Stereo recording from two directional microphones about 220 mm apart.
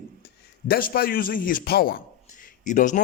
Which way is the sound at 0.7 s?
40° left (ahead or behind).